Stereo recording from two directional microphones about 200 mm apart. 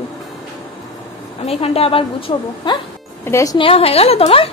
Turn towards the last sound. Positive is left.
turn(degrees=30)  # may be behind; listen again after turning